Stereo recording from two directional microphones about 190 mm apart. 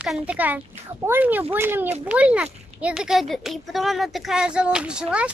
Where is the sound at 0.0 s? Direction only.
5° right (ahead or behind).